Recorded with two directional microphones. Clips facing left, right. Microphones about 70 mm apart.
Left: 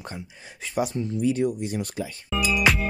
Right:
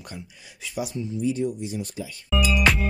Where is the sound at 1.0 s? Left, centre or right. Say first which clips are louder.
Right 1 dB; left.